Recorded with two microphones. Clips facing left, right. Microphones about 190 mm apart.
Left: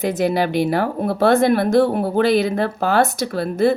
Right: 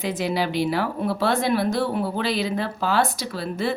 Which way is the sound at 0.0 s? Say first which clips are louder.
Left 6 dB; 50° left (ahead or behind).